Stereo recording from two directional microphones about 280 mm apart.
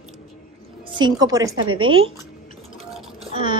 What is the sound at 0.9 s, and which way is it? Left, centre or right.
Speech, centre.